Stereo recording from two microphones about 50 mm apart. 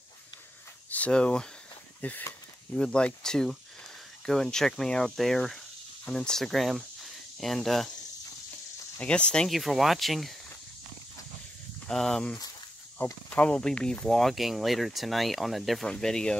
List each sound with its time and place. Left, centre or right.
0.8 s a sound: left
1.1 s speech: centre
2.0 s speech: left
2.7 s speech: centre
9.0 s speech: left
9.5 s speech: centre
11.9 s speech: centre
13.3 s speech: left
14.0 s speech: centre
15.9 s speech: centre